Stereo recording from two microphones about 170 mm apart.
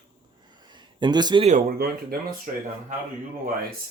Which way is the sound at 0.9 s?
25° right (ahead or behind).